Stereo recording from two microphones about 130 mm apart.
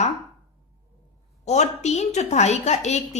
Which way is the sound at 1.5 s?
60° left (ahead or behind).